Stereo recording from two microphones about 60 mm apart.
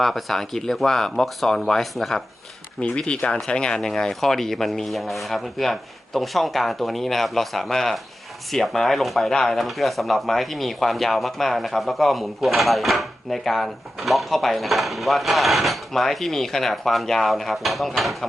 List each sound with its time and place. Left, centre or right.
0.0 s speech: centre
2.8 s speech: left; by 18.3 s centre